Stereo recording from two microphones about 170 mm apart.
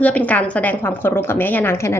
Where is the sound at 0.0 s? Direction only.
10° left (ahead or behind).